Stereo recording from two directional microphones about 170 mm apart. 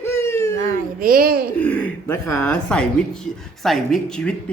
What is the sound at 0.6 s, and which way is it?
Speech, 60° right (ahead or behind).